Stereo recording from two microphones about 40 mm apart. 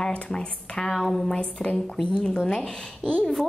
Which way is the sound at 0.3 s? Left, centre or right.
Centre.